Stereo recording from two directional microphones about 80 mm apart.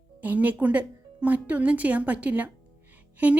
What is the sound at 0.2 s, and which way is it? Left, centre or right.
A woman's voice, right.